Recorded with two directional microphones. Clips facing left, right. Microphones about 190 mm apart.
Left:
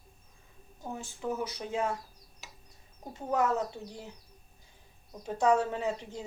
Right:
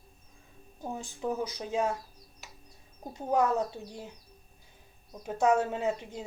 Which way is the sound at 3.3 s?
15° right (ahead or behind).